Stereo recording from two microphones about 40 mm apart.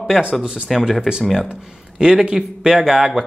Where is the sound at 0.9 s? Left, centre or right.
Centre.